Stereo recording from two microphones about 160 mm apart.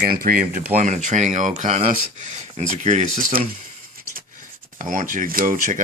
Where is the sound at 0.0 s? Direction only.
60° right (ahead or behind).